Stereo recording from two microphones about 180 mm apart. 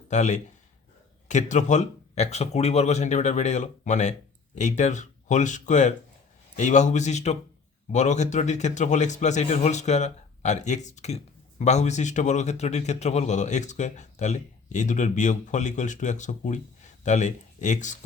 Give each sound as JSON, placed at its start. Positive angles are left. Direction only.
{"t": 0.1, "sound": "a man's voice", "side_deg": 40}